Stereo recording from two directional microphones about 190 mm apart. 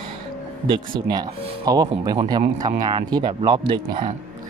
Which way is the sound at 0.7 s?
20° right (ahead or behind).